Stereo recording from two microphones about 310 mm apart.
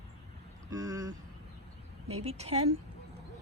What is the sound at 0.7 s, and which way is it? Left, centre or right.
A woman's voice, centre.